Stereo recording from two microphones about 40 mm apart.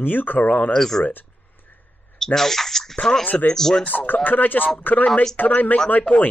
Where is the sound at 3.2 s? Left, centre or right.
Left.